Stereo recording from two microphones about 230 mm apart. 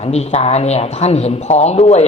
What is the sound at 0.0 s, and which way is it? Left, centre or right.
A woman's voice, left.